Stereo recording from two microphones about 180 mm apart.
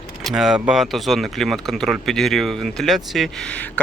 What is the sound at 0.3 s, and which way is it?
Speech, centre (ahead or behind).